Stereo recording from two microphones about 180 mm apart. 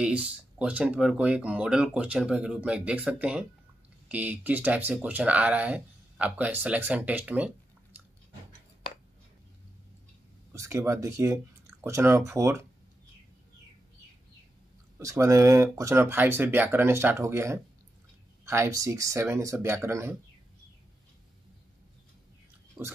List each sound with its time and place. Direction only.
0.0 s speech: 5° right (ahead or behind)
10.5 s speech: 15° right (ahead or behind)
15.0 s speech: 15° right (ahead or behind)
22.8 s speech: centre (ahead or behind)